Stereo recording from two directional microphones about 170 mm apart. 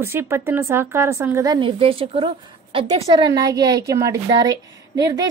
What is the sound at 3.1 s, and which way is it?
A woman's voice, 20° right (ahead or behind).